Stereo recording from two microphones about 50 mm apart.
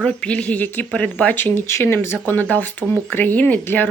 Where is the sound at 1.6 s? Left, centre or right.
Left.